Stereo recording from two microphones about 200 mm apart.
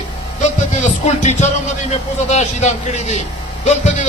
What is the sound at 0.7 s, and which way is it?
A man's voice, 35° left (ahead or behind).